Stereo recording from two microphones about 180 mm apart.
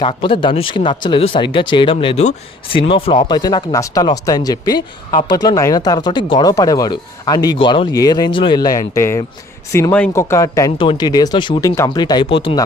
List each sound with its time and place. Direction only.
0.0 s speech: 30° left (ahead or behind)